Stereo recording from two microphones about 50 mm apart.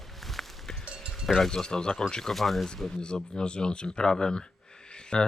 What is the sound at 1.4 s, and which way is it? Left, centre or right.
Speech, centre.